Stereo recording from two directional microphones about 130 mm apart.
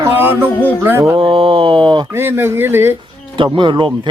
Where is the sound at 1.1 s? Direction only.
40° right (ahead or behind).